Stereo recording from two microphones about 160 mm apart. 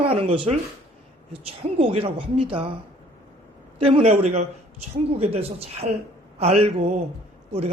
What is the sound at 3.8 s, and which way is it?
Speech, 40° right (ahead or behind).